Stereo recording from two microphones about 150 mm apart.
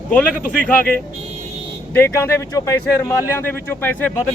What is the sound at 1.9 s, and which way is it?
Speech, 15° left (ahead or behind).